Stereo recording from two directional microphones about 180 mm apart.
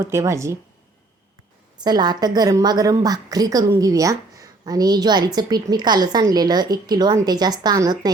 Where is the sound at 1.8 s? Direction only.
25° right (ahead or behind).